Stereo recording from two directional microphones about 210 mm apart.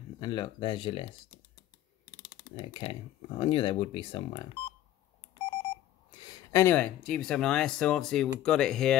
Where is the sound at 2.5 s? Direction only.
25° left (ahead or behind).